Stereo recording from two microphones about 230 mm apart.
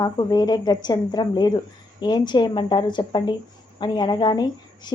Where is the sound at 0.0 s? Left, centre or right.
Centre.